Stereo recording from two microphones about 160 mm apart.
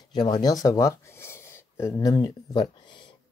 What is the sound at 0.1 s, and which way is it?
Speech, 25° left (ahead or behind).